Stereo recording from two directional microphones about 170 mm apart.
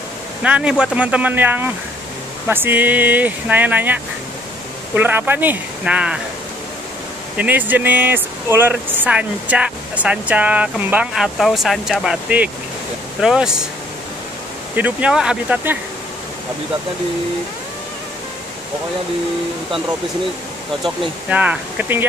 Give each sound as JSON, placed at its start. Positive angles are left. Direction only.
{"t": 0.4, "sound": "speech", "side_deg": -5}
{"t": 7.3, "sound": "speech", "side_deg": -10}
{"t": 14.8, "sound": "speech", "side_deg": -5}
{"t": 21.3, "sound": "speech", "side_deg": -10}